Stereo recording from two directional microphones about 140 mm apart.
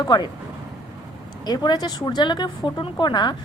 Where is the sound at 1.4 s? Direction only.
30° left (ahead or behind).